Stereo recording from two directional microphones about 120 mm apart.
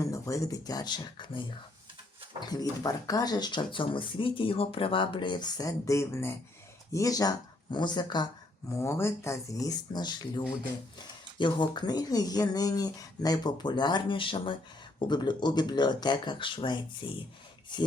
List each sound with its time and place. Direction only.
0.0 s speech: 25° left (ahead or behind); by 1.5 s 45° left (ahead or behind)
2.4 s speech: 35° left (ahead or behind)
8.7 s speech: 20° left (ahead or behind); by 17.9 s 40° left (ahead or behind)